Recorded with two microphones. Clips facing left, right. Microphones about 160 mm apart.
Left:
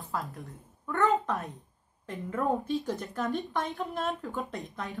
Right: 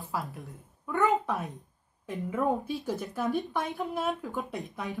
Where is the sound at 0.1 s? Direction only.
5° right (ahead or behind).